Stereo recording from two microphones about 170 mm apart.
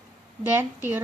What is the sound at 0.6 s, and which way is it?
Speech, 10° right (ahead or behind).